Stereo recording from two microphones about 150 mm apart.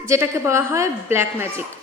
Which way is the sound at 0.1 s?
20° right (ahead or behind).